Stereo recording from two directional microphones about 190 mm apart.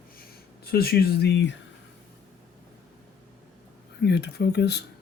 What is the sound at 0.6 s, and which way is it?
Speech, 55° left (ahead or behind).